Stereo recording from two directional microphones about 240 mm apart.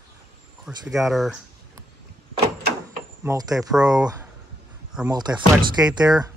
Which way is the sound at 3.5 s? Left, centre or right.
Centre.